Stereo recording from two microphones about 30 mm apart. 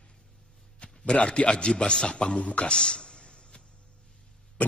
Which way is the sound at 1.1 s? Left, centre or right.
Left.